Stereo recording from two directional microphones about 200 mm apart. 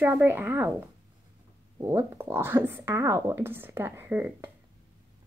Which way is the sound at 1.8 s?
15° right (ahead or behind).